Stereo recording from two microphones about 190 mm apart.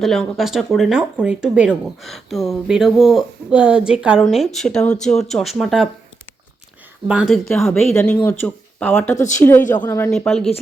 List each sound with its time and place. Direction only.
0.0 s speech: centre (ahead or behind)
7.1 s speech: 5° right (ahead or behind)
7.9 s speech: 10° left (ahead or behind)
10.1 s speech: centre (ahead or behind)